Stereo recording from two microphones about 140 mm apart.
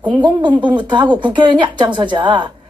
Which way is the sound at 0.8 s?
35° right (ahead or behind).